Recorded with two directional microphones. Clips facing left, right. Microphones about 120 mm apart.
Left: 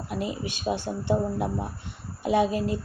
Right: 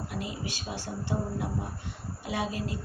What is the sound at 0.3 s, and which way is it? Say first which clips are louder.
Speech: left 8 dB; 20° left (ahead or behind).